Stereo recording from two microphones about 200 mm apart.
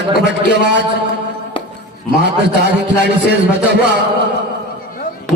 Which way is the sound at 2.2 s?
60° right (ahead or behind).